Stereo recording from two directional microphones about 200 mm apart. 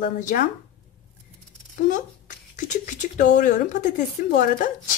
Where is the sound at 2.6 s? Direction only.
40° left (ahead or behind).